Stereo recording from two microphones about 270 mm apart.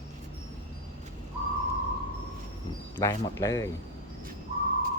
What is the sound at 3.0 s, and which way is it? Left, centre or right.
Speech, centre.